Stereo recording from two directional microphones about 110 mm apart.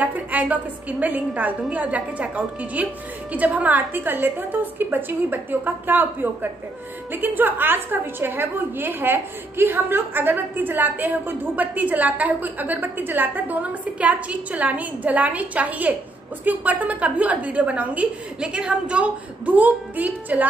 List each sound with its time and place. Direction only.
0.0 s a woman's voice: 15° right (ahead or behind)